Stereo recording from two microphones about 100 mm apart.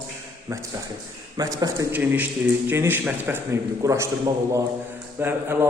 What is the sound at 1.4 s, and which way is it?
Speech, 35° right (ahead or behind).